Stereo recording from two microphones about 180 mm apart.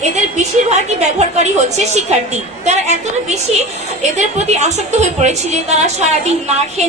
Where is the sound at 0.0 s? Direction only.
40° right (ahead or behind).